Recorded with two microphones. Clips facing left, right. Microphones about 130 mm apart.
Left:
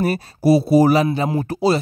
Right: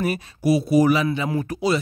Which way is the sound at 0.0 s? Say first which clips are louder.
Left 4 dB; 35° left (ahead or behind).